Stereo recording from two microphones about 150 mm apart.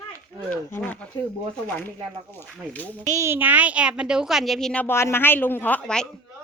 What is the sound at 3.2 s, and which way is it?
Speech, 15° right (ahead or behind).